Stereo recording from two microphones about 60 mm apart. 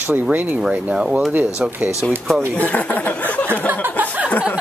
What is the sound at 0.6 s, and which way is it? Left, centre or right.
Speech, centre.